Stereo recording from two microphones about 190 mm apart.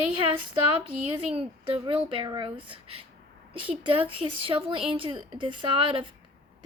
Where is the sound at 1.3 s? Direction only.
30° right (ahead or behind).